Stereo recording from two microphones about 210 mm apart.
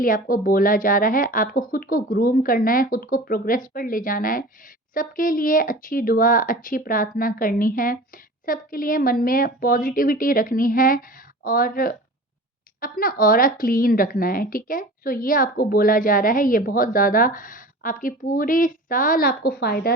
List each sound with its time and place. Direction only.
0.0 s a woman's voice: 40° left (ahead or behind)